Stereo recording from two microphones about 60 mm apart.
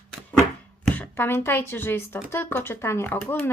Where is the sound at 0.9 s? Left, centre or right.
Left.